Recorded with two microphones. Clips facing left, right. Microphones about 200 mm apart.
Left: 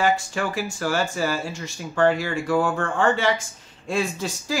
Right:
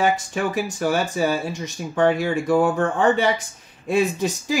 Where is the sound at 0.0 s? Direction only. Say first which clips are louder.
Right 1 dB; 20° right (ahead or behind).